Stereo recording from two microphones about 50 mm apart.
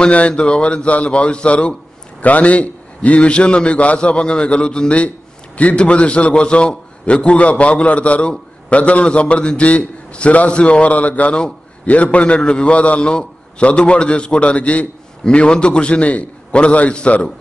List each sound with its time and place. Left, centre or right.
0.0 s a man's voice: left